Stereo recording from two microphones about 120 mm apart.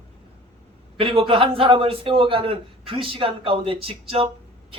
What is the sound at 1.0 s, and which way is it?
Speech, 50° right (ahead or behind).